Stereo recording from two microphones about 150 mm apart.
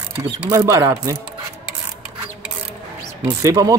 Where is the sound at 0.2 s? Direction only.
20° right (ahead or behind).